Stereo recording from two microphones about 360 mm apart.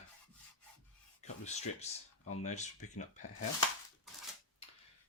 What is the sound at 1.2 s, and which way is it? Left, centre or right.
Speech, centre.